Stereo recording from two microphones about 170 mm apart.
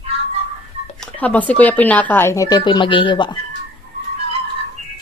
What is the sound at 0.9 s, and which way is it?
Speech, 5° left (ahead or behind).